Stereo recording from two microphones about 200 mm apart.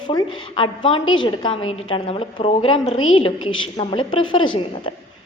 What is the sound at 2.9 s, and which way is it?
Speech, 90° left.